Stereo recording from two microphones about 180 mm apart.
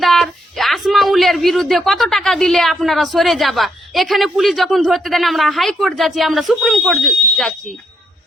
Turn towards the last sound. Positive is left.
turn(degrees=0)  # may be behind; listen again after turning